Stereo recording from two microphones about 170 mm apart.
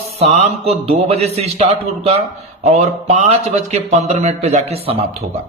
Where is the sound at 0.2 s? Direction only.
40° right (ahead or behind).